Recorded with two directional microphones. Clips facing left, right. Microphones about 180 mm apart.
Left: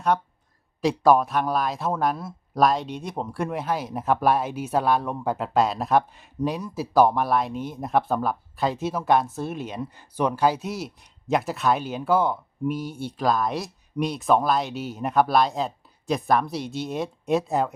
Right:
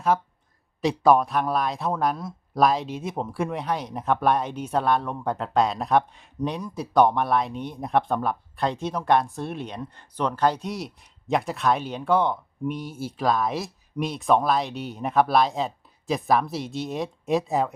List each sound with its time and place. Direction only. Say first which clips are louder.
0.1 s speech: even; 5° right (ahead or behind)